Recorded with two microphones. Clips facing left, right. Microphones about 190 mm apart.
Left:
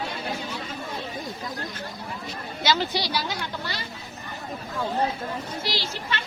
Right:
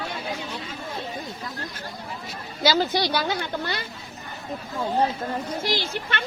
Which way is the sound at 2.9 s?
55° right (ahead or behind).